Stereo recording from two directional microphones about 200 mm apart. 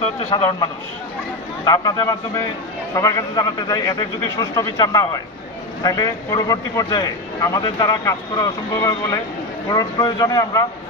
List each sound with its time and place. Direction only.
0.0 s a man's voice: 25° left (ahead or behind)